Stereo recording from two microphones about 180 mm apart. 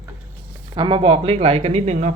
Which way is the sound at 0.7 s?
30° right (ahead or behind).